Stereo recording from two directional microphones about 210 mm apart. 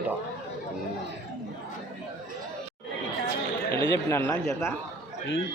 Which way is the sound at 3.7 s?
10° left (ahead or behind).